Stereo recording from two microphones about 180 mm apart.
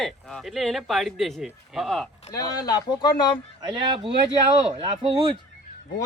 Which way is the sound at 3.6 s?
25° right (ahead or behind).